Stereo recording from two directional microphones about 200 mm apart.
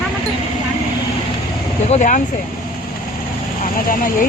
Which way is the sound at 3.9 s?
45° left (ahead or behind).